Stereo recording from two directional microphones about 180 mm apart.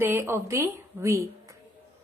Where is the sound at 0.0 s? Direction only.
15° right (ahead or behind).